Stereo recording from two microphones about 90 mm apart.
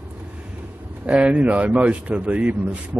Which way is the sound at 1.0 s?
15° right (ahead or behind).